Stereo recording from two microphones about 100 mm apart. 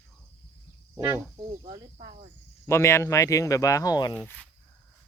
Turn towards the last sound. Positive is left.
turn(degrees=15)  # may be behind; listen again after turning